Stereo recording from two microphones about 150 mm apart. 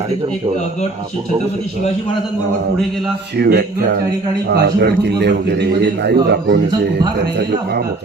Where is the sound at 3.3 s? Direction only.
90° right.